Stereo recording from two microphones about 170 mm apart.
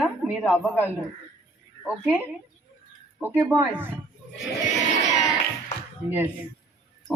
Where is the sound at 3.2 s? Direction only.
10° right (ahead or behind).